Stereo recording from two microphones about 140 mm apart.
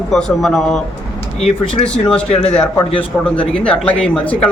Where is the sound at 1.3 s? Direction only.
45° left (ahead or behind).